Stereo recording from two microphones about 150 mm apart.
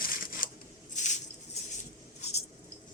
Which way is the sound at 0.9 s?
55° left (ahead or behind).